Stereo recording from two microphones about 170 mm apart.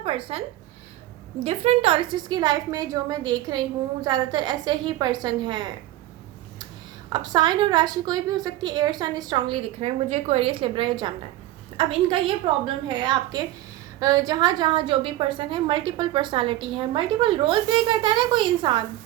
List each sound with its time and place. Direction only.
0.0 s a woman's voice: 35° right (ahead or behind)
1.5 s a woman's voice: 35° right (ahead or behind)
7.1 s a woman's voice: 25° right (ahead or behind)